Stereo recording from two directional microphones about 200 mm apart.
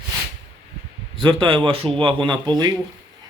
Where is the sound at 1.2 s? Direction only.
25° right (ahead or behind).